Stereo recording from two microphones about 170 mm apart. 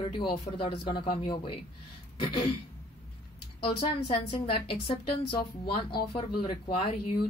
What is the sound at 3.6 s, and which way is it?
A woman's voice, 30° left (ahead or behind).